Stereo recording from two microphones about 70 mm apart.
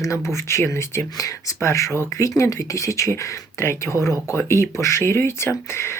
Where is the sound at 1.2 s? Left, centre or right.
Left.